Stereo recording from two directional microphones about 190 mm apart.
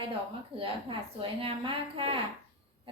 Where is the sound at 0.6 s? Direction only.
30° right (ahead or behind).